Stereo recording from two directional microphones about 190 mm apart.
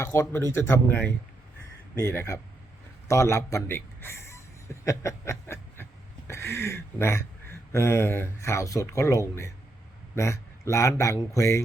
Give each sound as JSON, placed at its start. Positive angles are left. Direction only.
{"t": 0.0, "sound": "speech", "side_deg": 15}
{"t": 3.1, "sound": "a sound", "side_deg": 15}
{"t": 6.2, "sound": "speech", "side_deg": 15}